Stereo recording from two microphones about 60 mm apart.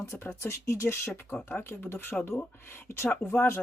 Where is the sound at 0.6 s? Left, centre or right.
Left.